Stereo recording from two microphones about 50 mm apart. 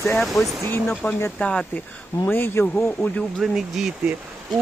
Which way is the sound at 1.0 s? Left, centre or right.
Left.